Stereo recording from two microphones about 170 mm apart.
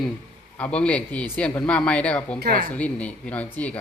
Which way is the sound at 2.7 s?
10° left (ahead or behind).